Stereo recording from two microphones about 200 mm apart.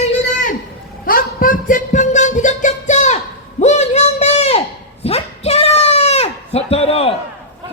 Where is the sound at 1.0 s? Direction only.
45° left (ahead or behind).